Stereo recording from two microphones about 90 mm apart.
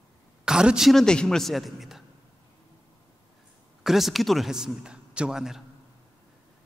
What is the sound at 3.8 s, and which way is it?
A man's voice, 5° right (ahead or behind).